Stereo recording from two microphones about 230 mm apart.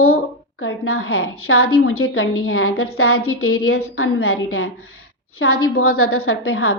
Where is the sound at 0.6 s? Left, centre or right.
Left.